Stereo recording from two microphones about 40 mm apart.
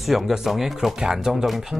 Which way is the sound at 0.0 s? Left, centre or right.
Centre.